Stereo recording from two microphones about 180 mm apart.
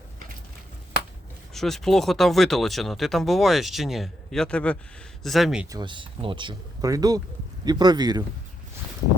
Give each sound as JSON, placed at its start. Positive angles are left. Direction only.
{"t": 1.5, "sound": "speech", "side_deg": 0}
{"t": 5.7, "sound": "speech", "side_deg": -25}